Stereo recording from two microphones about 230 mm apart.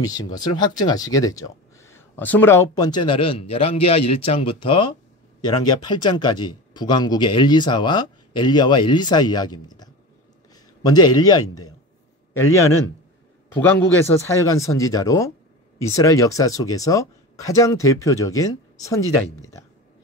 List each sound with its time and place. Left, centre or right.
0.0 s speech: centre
10.5 s a sound: centre
11.1 s speech: centre
12.5 s speech: centre